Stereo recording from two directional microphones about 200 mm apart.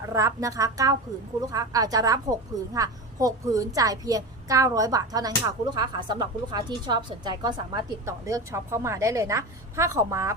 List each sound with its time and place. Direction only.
0.0 s a woman's voice: 15° right (ahead or behind)